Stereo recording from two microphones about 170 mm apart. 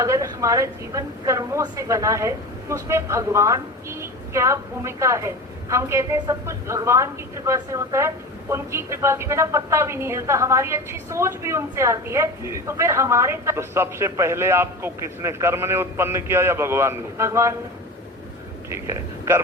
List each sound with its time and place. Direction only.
0.0 s a woman's voice: 20° right (ahead or behind)
18.7 s speech: 15° right (ahead or behind)